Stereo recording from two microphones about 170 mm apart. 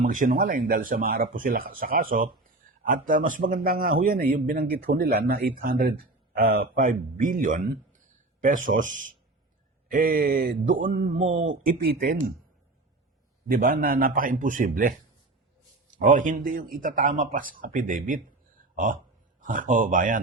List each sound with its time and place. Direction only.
0.0 s a man's voice: 50° right (ahead or behind)
13.5 s speech: 55° right (ahead or behind)
16.0 s a man's voice: 50° right (ahead or behind)
19.4 s a man's voice: 50° right (ahead or behind)